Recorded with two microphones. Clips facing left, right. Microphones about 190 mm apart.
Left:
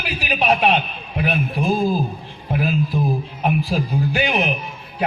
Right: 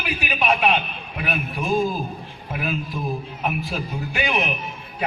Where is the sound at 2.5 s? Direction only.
35° left (ahead or behind).